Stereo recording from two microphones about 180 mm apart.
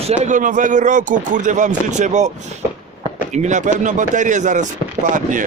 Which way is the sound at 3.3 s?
40° right (ahead or behind).